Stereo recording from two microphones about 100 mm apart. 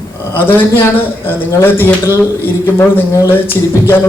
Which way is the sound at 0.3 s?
20° left (ahead or behind).